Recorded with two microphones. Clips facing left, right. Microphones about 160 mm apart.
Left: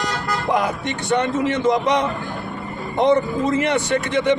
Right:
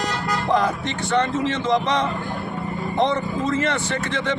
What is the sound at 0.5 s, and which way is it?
Speech, 15° left (ahead or behind).